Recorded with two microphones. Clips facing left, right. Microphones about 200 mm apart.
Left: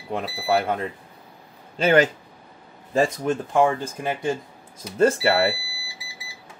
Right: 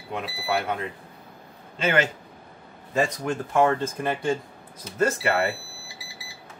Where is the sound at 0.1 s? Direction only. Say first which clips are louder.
Left 5 dB; 35° left (ahead or behind).